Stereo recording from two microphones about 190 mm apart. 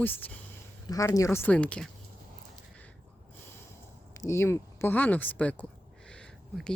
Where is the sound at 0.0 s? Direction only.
10° left (ahead or behind).